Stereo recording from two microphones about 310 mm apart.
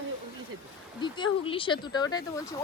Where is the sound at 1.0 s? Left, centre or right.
Centre.